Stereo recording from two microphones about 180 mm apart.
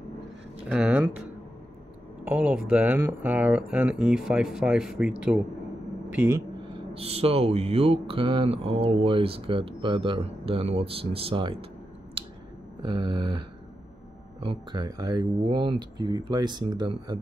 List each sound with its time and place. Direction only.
0.7 s speech: 5° right (ahead or behind)
2.2 s speech: 5° right (ahead or behind)
6.1 s speech: 15° right (ahead or behind)
6.9 s speech: 35° right (ahead or behind)
12.2 s a sound: 30° right (ahead or behind)
12.8 s speech: 25° right (ahead or behind)